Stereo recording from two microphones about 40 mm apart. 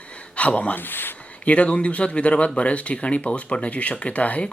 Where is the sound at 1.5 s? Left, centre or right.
Left.